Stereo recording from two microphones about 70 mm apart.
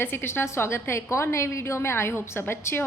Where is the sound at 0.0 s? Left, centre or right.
Left.